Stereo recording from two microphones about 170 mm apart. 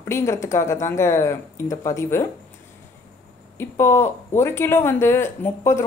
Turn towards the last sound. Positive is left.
turn(degrees=15)  # may be behind; listen again after turning